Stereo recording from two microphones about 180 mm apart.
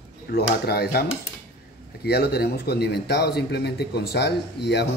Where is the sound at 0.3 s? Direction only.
65° left (ahead or behind).